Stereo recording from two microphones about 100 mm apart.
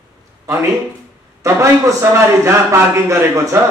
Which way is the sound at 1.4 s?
30° right (ahead or behind).